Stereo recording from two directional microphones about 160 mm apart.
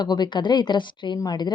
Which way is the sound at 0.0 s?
25° left (ahead or behind).